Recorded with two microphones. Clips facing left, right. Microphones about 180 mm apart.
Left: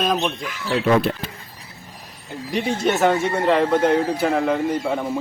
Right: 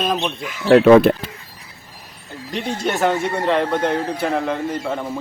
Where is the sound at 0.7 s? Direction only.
70° right (ahead or behind).